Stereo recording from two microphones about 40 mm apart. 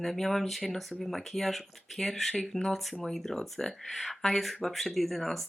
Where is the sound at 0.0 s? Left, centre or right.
Centre.